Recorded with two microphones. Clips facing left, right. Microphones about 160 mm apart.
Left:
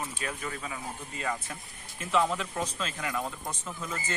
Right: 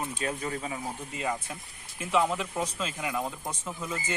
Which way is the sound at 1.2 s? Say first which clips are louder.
Right 1 dB; 15° right (ahead or behind).